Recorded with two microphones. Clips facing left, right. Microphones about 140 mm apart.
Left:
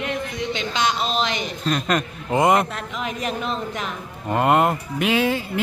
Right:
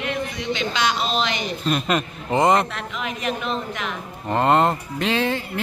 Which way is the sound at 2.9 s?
40° left (ahead or behind).